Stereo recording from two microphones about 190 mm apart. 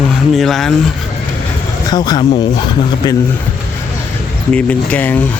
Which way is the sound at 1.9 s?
20° left (ahead or behind).